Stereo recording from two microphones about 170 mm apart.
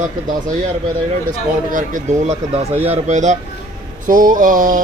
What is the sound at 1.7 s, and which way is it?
Speech, 50° right (ahead or behind).